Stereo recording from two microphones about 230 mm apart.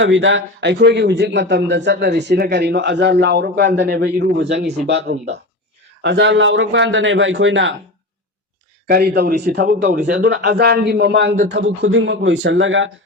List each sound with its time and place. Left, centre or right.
0.0 s a man's voice: right
8.9 s a man's voice: right